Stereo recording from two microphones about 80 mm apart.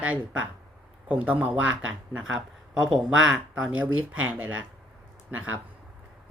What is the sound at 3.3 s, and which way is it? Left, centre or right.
A woman's voice, centre.